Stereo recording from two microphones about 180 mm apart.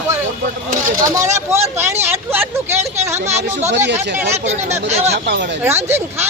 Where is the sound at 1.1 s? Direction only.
15° right (ahead or behind).